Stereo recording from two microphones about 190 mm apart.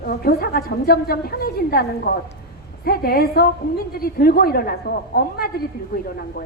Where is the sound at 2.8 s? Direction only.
55° left (ahead or behind).